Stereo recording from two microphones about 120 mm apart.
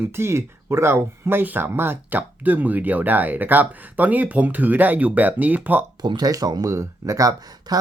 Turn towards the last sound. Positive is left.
turn(degrees=-30)  # may be behind; listen again after turning